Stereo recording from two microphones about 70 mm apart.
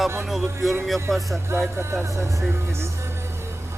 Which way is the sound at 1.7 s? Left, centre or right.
Right.